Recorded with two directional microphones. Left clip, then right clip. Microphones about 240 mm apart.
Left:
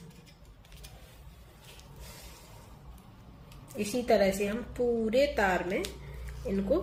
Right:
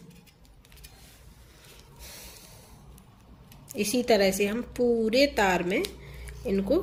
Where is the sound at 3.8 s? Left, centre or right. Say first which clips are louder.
Right 3 dB; right.